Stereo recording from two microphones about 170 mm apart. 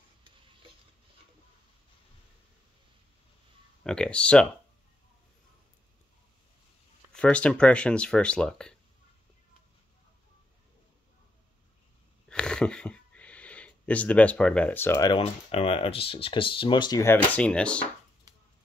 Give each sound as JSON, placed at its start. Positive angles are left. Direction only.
{"t": 3.8, "sound": "speech", "side_deg": 5}
{"t": 7.1, "sound": "speech", "side_deg": 5}
{"t": 12.3, "sound": "a sound", "side_deg": 5}
{"t": 15.0, "sound": "speech", "side_deg": 35}